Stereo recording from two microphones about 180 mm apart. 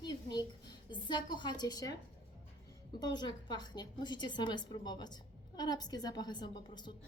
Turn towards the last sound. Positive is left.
turn(degrees=25)  # may be behind; listen again after turning